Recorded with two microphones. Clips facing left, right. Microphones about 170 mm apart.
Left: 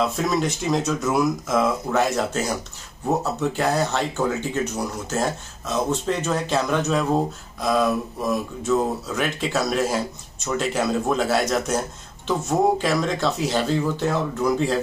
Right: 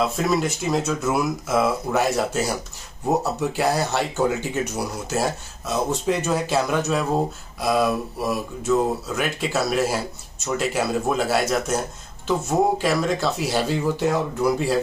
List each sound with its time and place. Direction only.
0.0 s speech: 5° right (ahead or behind)